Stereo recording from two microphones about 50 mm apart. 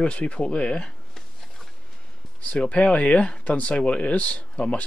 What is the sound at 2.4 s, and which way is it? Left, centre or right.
Speech, left.